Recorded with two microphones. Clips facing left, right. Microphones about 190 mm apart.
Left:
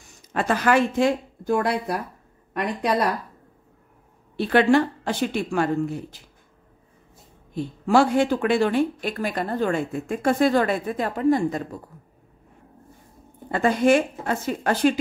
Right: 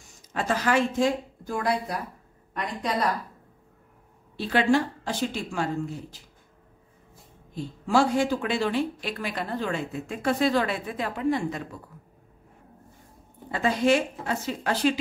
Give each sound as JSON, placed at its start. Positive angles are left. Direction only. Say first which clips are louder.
{"t": 0.1, "sound": "a woman's voice", "louder": "left 4 dB", "side_deg": 60}
{"t": 4.4, "sound": "speech", "louder": "left 5 dB", "side_deg": 60}
{"t": 7.5, "sound": "speech", "louder": "left 4 dB", "side_deg": 60}
{"t": 13.5, "sound": "speech", "louder": "left 4 dB", "side_deg": 50}